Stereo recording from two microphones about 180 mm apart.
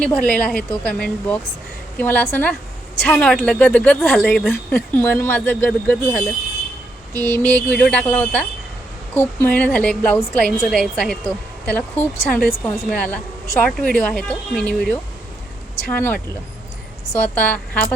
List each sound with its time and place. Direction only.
0.0 s speech: 5° left (ahead or behind)
7.1 s a sound: 20° right (ahead or behind)
7.4 s speech: 5° left (ahead or behind)